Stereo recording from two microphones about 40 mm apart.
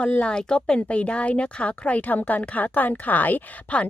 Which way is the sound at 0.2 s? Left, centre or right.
Left.